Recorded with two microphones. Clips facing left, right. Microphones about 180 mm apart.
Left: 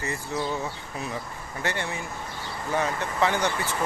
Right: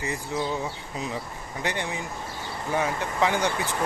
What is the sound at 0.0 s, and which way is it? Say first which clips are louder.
Speech: right 1 dB; 15° right (ahead or behind).